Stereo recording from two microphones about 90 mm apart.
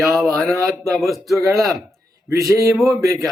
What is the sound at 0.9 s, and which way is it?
Speech, centre (ahead or behind).